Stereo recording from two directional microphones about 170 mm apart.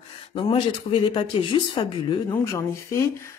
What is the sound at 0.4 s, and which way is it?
Speech, 30° left (ahead or behind).